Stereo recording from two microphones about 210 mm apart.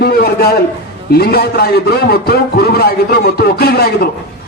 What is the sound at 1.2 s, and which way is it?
A man's voice, 50° left (ahead or behind).